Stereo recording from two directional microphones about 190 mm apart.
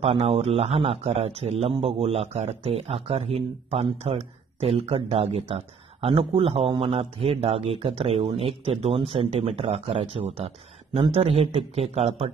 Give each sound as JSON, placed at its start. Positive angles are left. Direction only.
{"t": 0.0, "sound": "a man's voice", "side_deg": -30}